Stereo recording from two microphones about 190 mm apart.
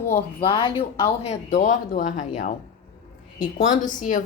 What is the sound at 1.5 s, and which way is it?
A woman's voice, 45° left (ahead or behind).